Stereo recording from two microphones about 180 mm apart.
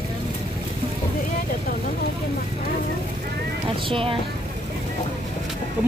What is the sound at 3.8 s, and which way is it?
Speech, 30° right (ahead or behind).